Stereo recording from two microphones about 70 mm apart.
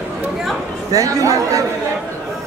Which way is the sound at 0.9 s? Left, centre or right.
Right.